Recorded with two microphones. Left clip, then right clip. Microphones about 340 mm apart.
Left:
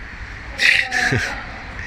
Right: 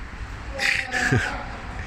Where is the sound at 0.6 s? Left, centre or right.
Centre.